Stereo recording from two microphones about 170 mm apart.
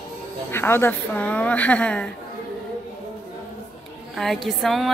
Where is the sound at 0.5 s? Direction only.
15° left (ahead or behind).